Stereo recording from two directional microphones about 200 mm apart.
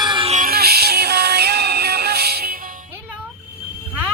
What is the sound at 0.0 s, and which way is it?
Music, 25° right (ahead or behind).